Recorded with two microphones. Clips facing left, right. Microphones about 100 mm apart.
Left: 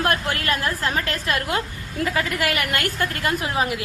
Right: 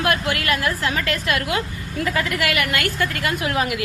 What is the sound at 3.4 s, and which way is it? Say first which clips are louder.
Speech: right 1 dB; 30° left (ahead or behind).